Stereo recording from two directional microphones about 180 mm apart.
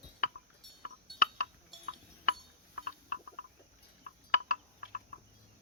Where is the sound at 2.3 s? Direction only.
50° left (ahead or behind).